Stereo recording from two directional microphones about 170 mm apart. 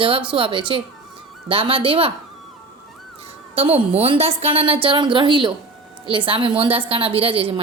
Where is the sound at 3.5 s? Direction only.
35° right (ahead or behind).